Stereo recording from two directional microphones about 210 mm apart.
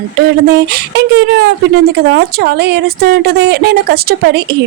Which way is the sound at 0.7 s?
50° right (ahead or behind).